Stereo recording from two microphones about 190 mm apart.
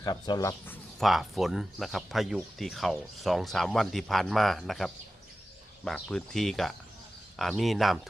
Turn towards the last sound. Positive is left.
turn(degrees=0)  # may be behind; listen again after turning